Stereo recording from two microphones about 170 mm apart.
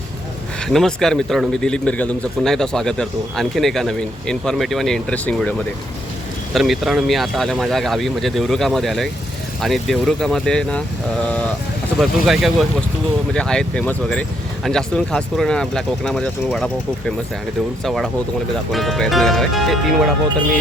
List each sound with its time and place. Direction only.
0.6 s speech: 5° left (ahead or behind)
11.9 s speech: centre (ahead or behind)
17.8 s speech: centre (ahead or behind)